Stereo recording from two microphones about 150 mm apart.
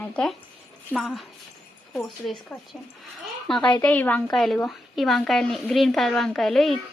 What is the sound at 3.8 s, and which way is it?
A woman's voice, 10° left (ahead or behind).